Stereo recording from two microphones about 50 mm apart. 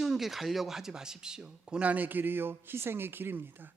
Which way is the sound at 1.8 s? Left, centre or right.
Right.